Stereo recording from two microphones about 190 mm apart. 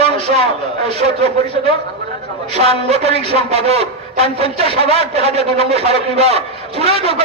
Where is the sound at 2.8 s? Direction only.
35° right (ahead or behind).